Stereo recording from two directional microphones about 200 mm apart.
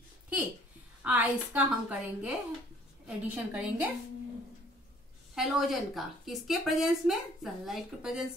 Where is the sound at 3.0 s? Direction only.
5° right (ahead or behind).